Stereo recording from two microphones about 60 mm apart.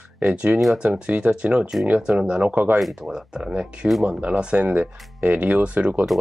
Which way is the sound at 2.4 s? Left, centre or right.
Right.